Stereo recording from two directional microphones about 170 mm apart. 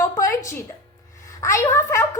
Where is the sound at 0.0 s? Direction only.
20° left (ahead or behind).